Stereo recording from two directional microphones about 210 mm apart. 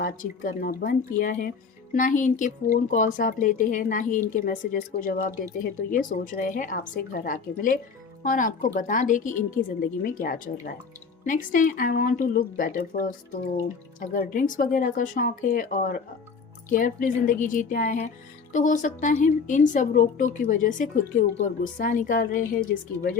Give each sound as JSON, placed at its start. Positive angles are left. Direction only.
{"t": 0.0, "sound": "a woman's voice", "side_deg": 40}